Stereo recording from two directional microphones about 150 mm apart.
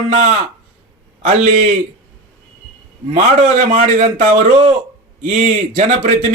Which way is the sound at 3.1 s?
50° right (ahead or behind).